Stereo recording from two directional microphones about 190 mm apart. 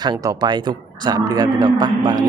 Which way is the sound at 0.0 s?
20° right (ahead or behind).